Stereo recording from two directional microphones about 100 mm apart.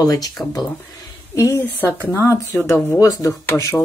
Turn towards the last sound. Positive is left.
turn(degrees=30)  # may be behind; listen again after turning